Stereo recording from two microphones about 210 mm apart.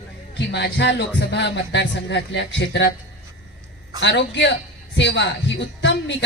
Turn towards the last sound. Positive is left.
turn(degrees=55)  # may be behind; listen again after turning